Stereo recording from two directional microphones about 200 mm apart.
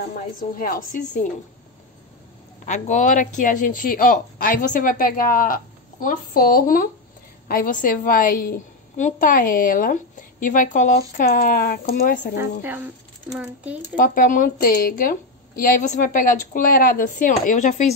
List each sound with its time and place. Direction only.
0.4 s a woman's voice: 45° left (ahead or behind)
2.6 s a woman's voice: 35° left (ahead or behind)
12.4 s speech: 10° right (ahead or behind)
13.9 s a woman's voice: 45° left (ahead or behind)